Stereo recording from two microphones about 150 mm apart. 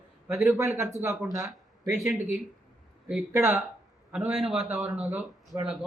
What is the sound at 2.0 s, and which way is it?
A man's voice, 5° right (ahead or behind).